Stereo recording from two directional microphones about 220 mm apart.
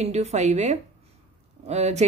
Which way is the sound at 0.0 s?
30° right (ahead or behind).